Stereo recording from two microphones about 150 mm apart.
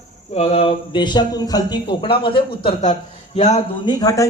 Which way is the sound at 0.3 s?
40° left (ahead or behind).